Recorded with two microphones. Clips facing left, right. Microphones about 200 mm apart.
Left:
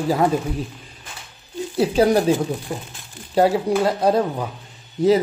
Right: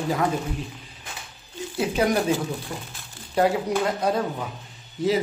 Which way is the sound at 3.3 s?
35° left (ahead or behind).